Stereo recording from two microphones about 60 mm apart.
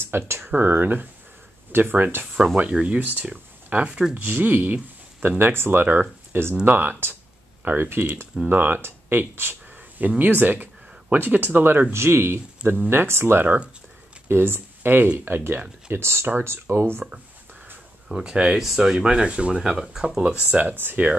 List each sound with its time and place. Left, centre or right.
0.0 s speech: right
2.3 s speech: right
3.0 s speech: right
18.0 s speech: centre
18.6 s speech: centre
20.7 s speech: right